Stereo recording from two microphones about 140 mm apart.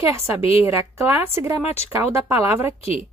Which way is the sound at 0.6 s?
20° right (ahead or behind).